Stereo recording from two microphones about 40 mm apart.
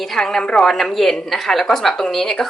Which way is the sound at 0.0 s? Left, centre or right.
Centre.